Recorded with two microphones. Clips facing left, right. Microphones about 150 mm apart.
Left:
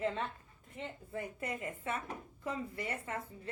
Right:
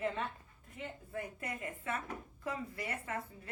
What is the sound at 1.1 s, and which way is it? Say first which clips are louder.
A woman's voice: left 3 dB; 25° left (ahead or behind).